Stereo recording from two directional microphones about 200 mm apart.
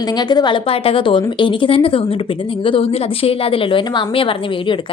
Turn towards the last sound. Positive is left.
turn(degrees=25)  # may be behind; listen again after turning